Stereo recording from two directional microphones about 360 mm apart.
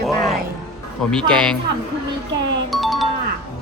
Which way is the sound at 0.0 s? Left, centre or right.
Centre.